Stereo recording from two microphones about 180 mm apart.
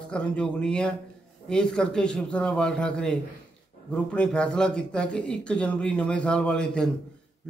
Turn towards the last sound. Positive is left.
turn(degrees=5)  # may be behind; listen again after turning